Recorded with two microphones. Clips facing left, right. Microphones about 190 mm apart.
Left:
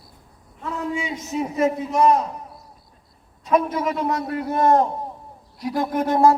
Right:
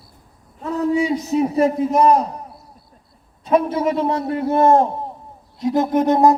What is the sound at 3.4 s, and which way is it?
A man's voice, 30° right (ahead or behind).